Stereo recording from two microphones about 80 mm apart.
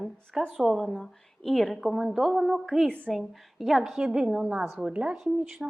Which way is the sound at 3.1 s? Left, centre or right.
Centre.